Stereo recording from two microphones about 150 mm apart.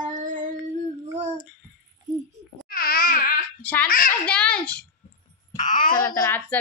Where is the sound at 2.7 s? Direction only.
80° left.